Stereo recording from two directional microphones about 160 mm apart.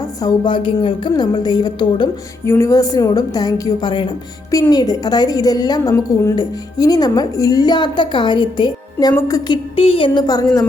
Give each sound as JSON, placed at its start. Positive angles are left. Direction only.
{"t": 0.2, "sound": "a woman's voice", "side_deg": 25}
{"t": 2.5, "sound": "a woman's voice", "side_deg": 20}
{"t": 9.7, "sound": "a woman's voice", "side_deg": 35}